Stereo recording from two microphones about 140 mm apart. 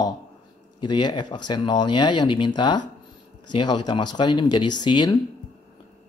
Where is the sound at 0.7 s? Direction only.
35° left (ahead or behind).